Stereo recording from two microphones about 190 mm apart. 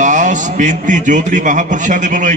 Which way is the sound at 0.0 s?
40° right (ahead or behind).